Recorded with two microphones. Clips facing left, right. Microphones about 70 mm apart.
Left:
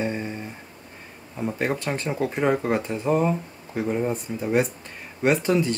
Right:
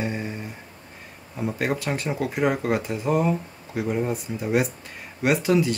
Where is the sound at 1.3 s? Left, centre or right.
Centre.